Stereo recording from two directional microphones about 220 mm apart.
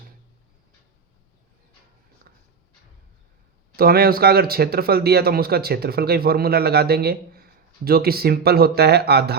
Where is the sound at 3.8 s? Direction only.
45° right (ahead or behind).